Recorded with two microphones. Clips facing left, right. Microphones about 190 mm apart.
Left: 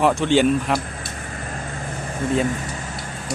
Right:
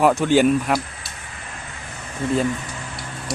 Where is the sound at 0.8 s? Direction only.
50° left (ahead or behind).